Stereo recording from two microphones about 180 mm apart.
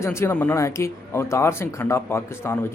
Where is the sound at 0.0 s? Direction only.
15° left (ahead or behind).